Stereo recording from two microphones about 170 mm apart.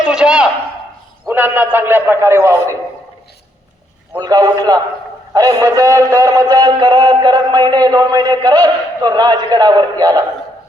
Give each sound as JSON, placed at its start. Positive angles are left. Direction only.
{"t": 0.1, "sound": "a sound", "side_deg": -5}
{"t": 1.3, "sound": "a man's voice", "side_deg": -10}
{"t": 4.2, "sound": "a man's voice", "side_deg": -20}